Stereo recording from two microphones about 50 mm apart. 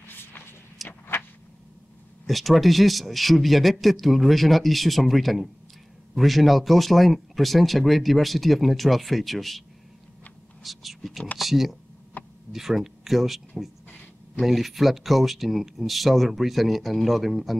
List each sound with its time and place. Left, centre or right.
0.1 s a sound: left
2.2 s speech: centre
10.6 s speech: centre
12.2 s a sound: left
12.5 s speech: centre
14.4 s speech: centre